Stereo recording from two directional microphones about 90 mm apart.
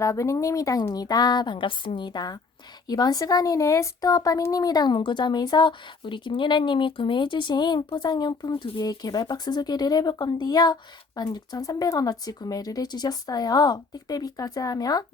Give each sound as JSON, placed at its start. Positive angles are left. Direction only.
{"t": 0.0, "sound": "speech", "side_deg": 35}
{"t": 8.0, "sound": "speech", "side_deg": 50}
{"t": 8.5, "sound": "speech", "side_deg": 65}
{"t": 8.8, "sound": "speech", "side_deg": 45}